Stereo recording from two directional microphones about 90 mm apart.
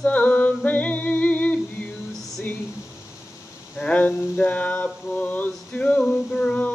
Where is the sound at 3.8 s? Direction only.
15° left (ahead or behind).